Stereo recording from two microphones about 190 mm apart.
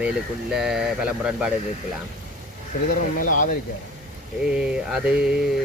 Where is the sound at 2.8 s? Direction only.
45° left (ahead or behind).